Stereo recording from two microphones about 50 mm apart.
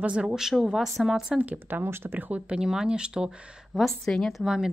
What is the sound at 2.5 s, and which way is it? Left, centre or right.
Speech, centre.